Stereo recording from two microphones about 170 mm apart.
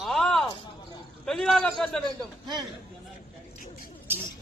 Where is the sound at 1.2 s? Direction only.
Centre (ahead or behind).